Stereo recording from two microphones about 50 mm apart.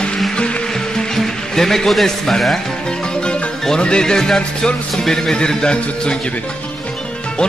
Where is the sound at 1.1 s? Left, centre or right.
Centre.